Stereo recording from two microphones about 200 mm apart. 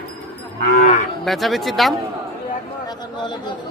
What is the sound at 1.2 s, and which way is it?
Speech, centre (ahead or behind).